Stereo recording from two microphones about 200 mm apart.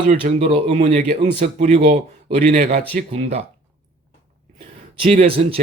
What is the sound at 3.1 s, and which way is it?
Speech, 30° right (ahead or behind).